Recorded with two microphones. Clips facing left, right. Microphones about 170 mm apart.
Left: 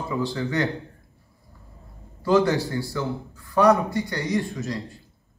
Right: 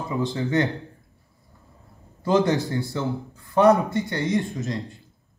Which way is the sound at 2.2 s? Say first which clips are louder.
Left 1 dB; 20° right (ahead or behind).